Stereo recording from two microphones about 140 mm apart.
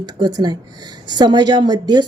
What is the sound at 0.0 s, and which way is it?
A woman's voice, 30° right (ahead or behind).